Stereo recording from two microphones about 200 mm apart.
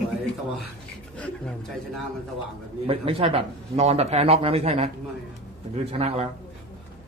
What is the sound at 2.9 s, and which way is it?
Speech, 30° right (ahead or behind).